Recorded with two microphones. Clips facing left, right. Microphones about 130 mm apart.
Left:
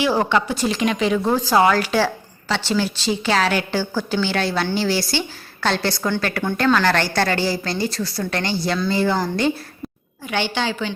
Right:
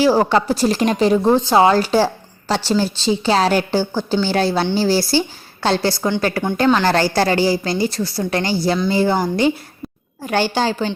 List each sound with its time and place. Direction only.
0.0 s a woman's voice: 35° right (ahead or behind); by 6.8 s 15° right (ahead or behind)
6.8 s a woman's voice: 30° right (ahead or behind)
10.2 s a woman's voice: 40° right (ahead or behind)